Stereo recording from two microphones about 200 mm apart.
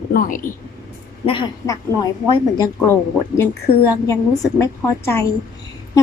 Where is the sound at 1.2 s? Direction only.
25° left (ahead or behind).